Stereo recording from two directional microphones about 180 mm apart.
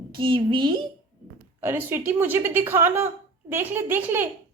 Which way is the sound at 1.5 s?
10° right (ahead or behind).